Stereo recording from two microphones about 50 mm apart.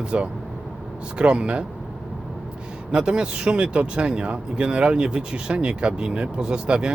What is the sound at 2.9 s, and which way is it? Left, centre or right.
Speech, centre.